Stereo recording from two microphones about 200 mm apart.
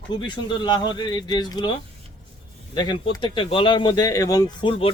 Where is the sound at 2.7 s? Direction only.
20° left (ahead or behind).